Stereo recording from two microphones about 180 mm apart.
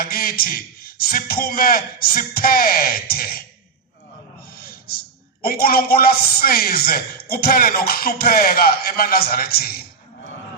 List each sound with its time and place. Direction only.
0.0 s a woman's voice: 55° left (ahead or behind)
4.5 s a sound: 55° left (ahead or behind)
5.4 s a woman's voice: 55° left (ahead or behind)